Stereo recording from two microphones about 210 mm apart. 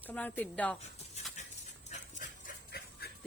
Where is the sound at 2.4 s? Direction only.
50° left (ahead or behind).